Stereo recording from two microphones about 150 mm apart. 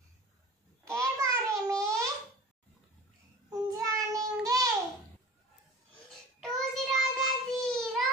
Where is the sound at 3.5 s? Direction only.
25° right (ahead or behind).